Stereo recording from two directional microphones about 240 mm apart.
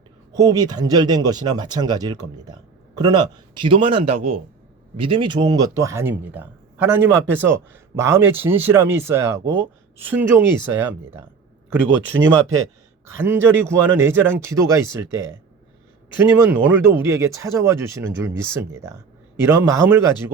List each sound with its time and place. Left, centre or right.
0.3 s speech: centre
13.1 s speech: centre